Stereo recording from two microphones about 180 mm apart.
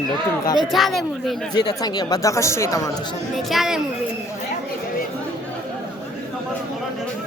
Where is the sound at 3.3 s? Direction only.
Centre (ahead or behind).